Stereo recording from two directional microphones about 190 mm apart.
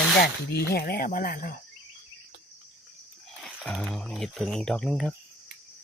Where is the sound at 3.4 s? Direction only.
5° left (ahead or behind).